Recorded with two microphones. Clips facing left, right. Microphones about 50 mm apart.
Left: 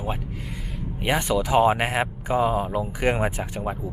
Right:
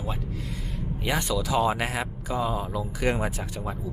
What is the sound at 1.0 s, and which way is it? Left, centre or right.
Speech, left.